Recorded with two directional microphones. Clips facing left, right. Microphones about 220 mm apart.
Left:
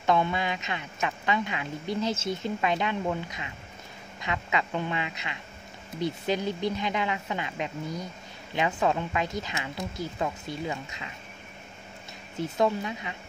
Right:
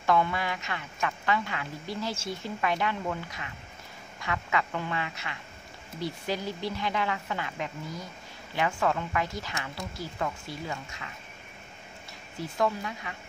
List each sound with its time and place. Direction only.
0.0 s a woman's voice: 20° left (ahead or behind)
12.4 s a woman's voice: 20° left (ahead or behind)